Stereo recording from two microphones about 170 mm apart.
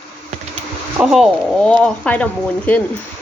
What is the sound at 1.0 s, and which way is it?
Speech, centre (ahead or behind).